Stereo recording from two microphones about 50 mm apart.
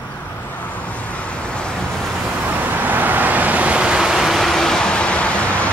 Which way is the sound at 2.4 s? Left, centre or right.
Right.